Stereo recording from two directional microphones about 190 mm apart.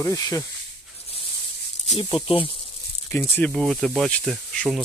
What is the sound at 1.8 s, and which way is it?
Speech, 35° left (ahead or behind).